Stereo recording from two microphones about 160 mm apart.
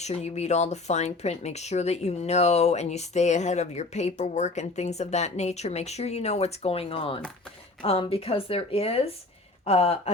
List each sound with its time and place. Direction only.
0.0 s speech: 45° left (ahead or behind)